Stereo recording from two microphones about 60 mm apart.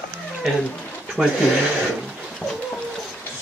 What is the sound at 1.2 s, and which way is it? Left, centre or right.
Speech, centre.